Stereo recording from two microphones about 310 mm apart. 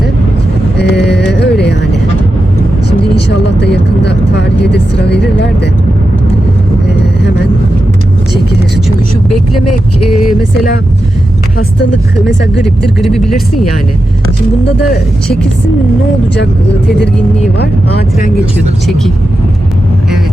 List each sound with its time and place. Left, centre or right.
0.8 s a sound: left
3.2 s speech: left
9.3 s speech: left
10.1 s speech: centre
12.6 s speech: centre